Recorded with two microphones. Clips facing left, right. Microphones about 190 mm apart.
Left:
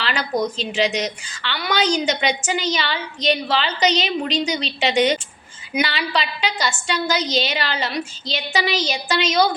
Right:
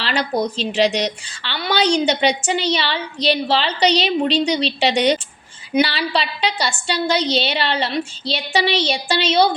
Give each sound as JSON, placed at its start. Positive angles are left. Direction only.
{"t": 0.0, "sound": "a woman's voice", "side_deg": -35}